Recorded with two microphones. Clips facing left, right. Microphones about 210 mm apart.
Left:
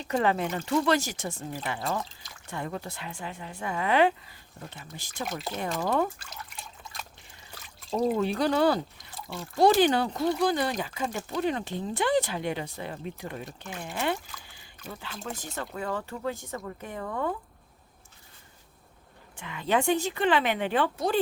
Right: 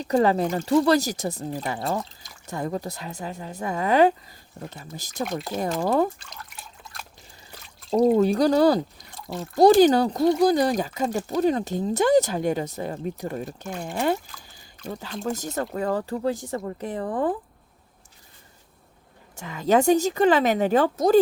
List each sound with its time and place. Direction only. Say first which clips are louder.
0.0 s speech: right 6 dB; 35° right (ahead or behind)
5.2 s speech: right 6 dB; centre (ahead or behind)
5.5 s speech: right 5 dB; 35° right (ahead or behind)
6.1 s drip: even; 5° left (ahead or behind)
7.9 s speech: right 7 dB; 40° right (ahead or behind)
19.4 s speech: right 7 dB; 40° right (ahead or behind)